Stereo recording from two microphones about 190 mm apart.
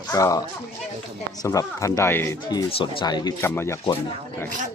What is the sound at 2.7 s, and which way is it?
Speech, 30° left (ahead or behind).